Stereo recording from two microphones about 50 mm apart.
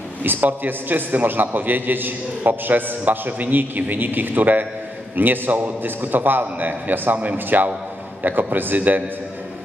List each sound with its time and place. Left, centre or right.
0.2 s a man's voice: right